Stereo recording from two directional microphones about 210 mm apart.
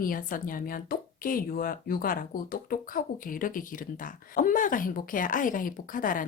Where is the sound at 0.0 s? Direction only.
40° left (ahead or behind).